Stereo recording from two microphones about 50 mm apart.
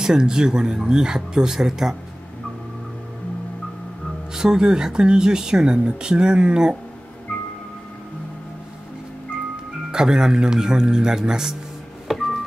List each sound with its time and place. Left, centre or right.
0.0 s speech: centre
4.3 s speech: centre
9.8 s speech: centre
12.1 s telephone dialing: centre